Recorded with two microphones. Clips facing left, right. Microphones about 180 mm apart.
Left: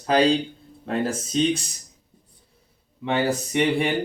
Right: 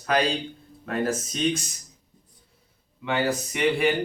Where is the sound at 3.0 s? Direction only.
30° left (ahead or behind).